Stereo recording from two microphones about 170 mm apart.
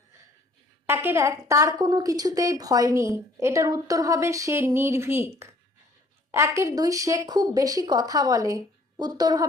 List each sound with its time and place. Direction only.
0.9 s a woman's voice: 15° right (ahead or behind)